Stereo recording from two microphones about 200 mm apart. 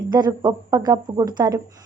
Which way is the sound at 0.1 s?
20° right (ahead or behind).